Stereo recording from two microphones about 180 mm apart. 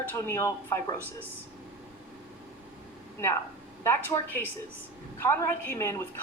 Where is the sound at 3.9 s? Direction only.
10° left (ahead or behind).